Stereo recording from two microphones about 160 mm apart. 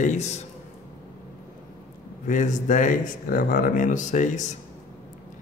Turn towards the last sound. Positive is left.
turn(degrees=50)  # may be behind; listen again after turning